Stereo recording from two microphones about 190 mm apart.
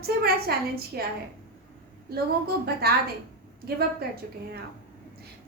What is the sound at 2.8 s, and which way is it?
Speech, 55° right (ahead or behind).